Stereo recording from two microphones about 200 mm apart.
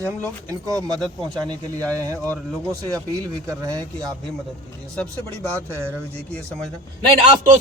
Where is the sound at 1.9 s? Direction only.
15° right (ahead or behind).